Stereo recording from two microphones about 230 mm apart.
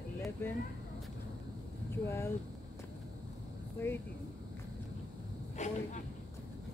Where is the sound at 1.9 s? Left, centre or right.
Centre.